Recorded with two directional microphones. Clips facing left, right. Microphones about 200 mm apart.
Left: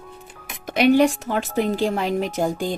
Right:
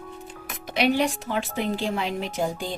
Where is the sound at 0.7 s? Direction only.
45° left (ahead or behind).